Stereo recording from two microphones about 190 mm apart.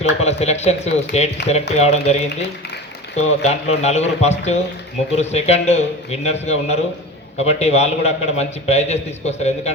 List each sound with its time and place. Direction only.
0.0 s a man's voice: 35° left (ahead or behind)